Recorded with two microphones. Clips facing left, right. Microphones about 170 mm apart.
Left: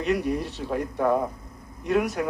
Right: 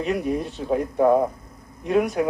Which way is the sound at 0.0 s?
Centre (ahead or behind).